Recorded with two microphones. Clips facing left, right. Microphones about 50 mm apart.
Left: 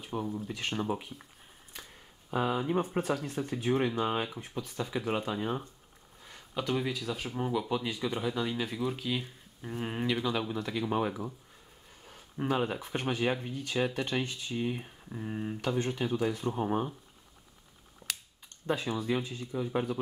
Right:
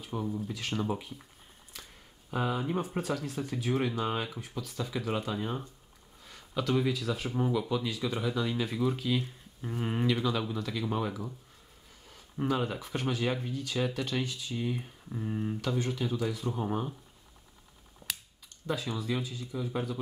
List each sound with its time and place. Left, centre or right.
0.0 s speech: centre
2.3 s speech: centre
3.0 s speech: left
4.0 s speech: centre
4.4 s speech: left
7.7 s speech: centre
12.4 s speech: centre
15.6 s speech: left
18.0 s a sound: centre
18.6 s speech: centre
18.9 s speech: left